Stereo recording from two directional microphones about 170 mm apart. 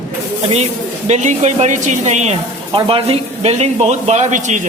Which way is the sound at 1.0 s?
45° right (ahead or behind).